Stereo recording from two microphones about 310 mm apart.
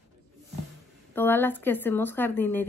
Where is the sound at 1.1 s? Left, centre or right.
Centre.